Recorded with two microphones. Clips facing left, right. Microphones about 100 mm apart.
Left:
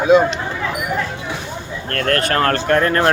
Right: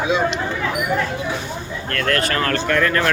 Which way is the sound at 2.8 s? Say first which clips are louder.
Left 2 dB; 35° left (ahead or behind).